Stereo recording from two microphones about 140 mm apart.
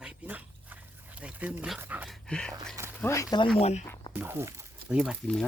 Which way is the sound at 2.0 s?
Centre (ahead or behind).